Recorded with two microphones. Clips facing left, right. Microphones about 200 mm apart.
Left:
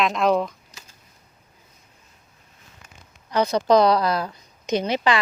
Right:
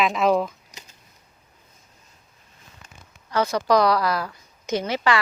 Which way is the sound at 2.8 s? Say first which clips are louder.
Left 1 dB; 15° left (ahead or behind).